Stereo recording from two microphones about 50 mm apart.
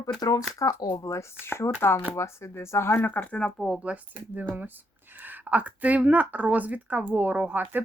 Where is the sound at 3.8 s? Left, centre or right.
Right.